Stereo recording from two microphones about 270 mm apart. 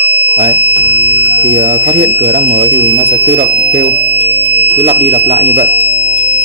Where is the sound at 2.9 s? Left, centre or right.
Right.